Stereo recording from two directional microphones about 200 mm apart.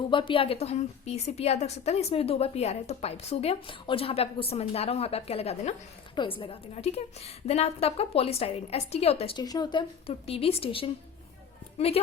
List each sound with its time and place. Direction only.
0.1 s a woman's voice: 25° left (ahead or behind)